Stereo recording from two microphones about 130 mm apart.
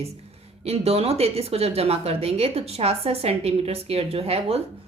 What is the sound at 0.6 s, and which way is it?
Speech, 50° right (ahead or behind).